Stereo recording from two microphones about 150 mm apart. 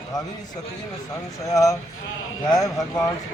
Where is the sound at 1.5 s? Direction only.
20° left (ahead or behind).